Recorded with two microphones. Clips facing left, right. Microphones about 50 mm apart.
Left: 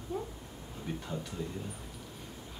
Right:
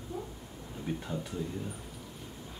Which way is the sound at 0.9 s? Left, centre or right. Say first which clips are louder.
Right 3 dB; centre.